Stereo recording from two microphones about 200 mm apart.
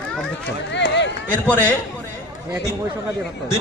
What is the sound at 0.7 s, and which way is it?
Run, 60° left (ahead or behind).